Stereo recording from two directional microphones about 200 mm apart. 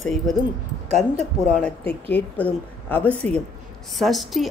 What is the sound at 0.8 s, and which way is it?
Speech, 30° right (ahead or behind).